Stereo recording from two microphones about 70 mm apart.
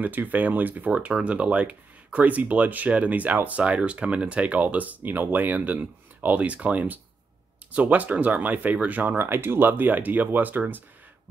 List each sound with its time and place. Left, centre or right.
0.0 s speech: right